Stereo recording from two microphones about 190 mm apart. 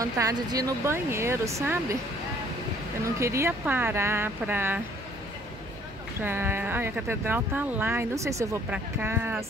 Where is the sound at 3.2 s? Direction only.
15° right (ahead or behind).